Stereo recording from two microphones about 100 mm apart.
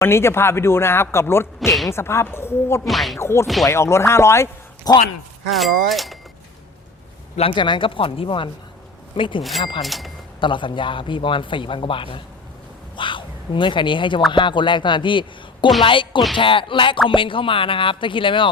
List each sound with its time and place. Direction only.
0.0 s speech: 25° left (ahead or behind)
2.8 s speech: centre (ahead or behind)
3.2 s speech: 25° left (ahead or behind)
3.4 s speech: centre (ahead or behind)
3.7 s speech: 30° left (ahead or behind)
4.9 s speech: 40° left (ahead or behind)
5.5 s speech: centre (ahead or behind)
7.5 s a man's voice: 55° left (ahead or behind)
9.4 s speech: centre (ahead or behind)
10.4 s a man's voice: 55° left (ahead or behind)